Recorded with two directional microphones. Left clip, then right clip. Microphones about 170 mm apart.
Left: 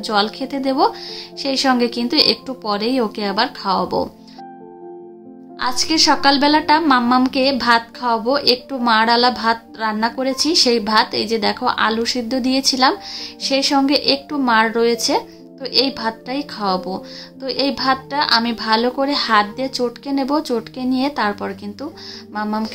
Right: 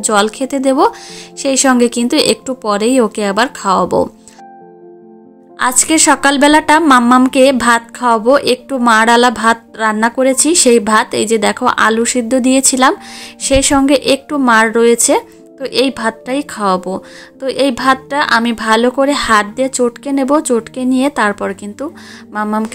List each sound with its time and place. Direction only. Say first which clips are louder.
0.0 s speech: right 6 dB; 40° right (ahead or behind)
5.6 s speech: right 4 dB; 45° right (ahead or behind)